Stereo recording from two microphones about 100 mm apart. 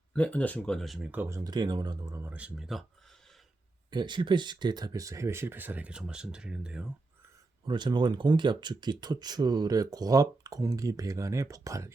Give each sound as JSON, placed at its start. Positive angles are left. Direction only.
{"t": 0.1, "sound": "speech", "side_deg": 15}
{"t": 1.3, "sound": "speech", "side_deg": -45}
{"t": 2.2, "sound": "speech", "side_deg": -15}
{"t": 2.6, "sound": "speech", "side_deg": 0}
{"t": 3.9, "sound": "speech", "side_deg": -50}
{"t": 7.6, "sound": "speech", "side_deg": -50}